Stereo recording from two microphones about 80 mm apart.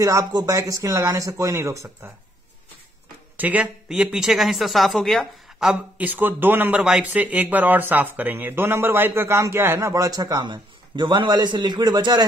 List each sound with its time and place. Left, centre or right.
0.0 s speech: right
3.3 s speech: centre
3.9 s speech: centre
5.9 s speech: right
10.4 s a man's voice: right